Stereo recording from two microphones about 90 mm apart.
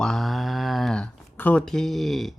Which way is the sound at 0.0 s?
5° left (ahead or behind).